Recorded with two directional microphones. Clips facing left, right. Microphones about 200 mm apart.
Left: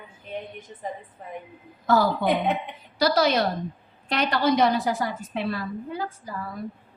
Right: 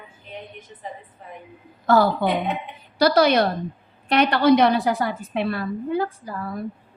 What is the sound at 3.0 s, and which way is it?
Speech, 60° right (ahead or behind).